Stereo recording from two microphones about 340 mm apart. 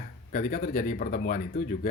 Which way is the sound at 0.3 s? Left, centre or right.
Left.